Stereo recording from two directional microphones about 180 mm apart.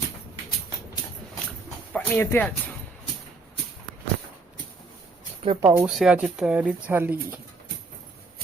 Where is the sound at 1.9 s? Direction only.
10° left (ahead or behind).